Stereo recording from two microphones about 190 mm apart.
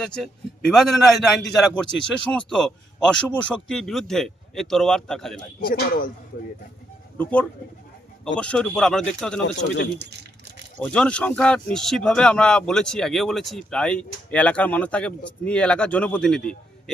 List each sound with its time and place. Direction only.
0.0 s speech: 5° left (ahead or behind)
5.6 s speech: 55° left (ahead or behind)
7.2 s speech: 5° left (ahead or behind)
10.8 s speech: 5° left (ahead or behind)